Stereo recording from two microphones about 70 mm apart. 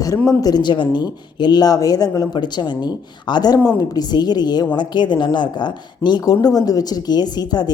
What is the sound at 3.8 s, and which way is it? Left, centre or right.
A woman's voice, left.